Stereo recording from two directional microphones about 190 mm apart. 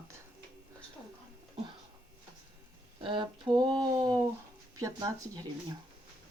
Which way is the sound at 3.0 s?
25° right (ahead or behind).